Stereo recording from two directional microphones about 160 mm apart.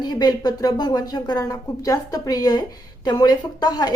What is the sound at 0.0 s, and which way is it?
Speech, 25° left (ahead or behind).